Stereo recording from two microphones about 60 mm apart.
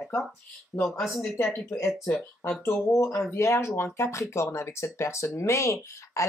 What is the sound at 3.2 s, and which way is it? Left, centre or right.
Speech, left.